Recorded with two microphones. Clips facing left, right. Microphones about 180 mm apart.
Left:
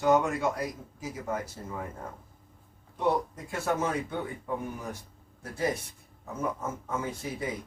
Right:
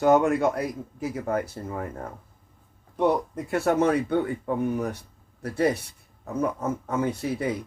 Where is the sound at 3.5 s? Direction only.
65° right (ahead or behind).